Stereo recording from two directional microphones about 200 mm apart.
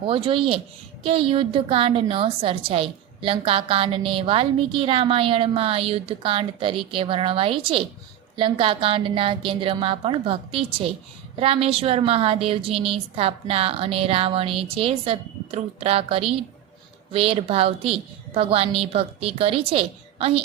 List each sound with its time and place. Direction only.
0.1 s a woman's voice: 25° right (ahead or behind)